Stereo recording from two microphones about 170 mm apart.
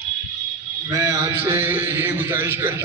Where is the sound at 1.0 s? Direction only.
15° right (ahead or behind).